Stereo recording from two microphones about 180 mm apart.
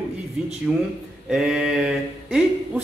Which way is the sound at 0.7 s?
Centre (ahead or behind).